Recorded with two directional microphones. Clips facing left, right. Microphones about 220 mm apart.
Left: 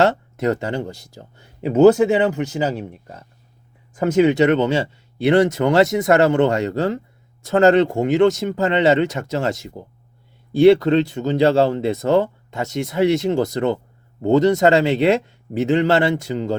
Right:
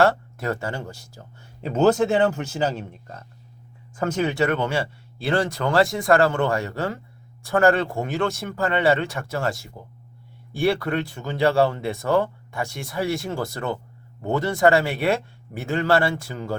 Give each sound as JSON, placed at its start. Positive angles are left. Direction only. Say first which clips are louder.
{"t": 0.0, "sound": "speech", "louder": "left 3 dB", "side_deg": 20}